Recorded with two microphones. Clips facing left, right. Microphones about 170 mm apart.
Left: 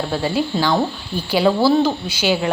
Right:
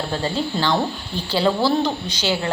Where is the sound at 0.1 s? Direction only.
10° left (ahead or behind).